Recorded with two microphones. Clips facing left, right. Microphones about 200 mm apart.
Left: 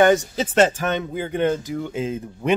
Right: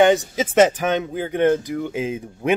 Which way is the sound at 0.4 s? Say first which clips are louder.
Right 2 dB; 15° right (ahead or behind).